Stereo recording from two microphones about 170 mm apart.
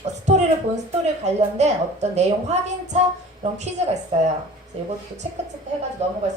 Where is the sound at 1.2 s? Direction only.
40° right (ahead or behind).